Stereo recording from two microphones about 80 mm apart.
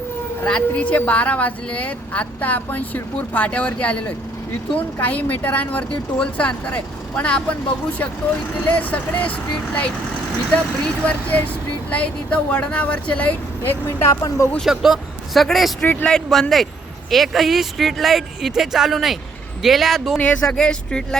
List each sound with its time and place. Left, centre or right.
0.4 s a woman's voice: centre
8.5 s speech: centre
11.0 s a woman's voice: centre
13.6 s speech: left
14.1 s speech: left
14.6 s speech: centre
20.1 s a woman's voice: centre